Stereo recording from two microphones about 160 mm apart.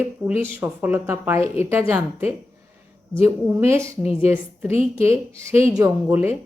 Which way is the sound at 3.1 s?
15° right (ahead or behind).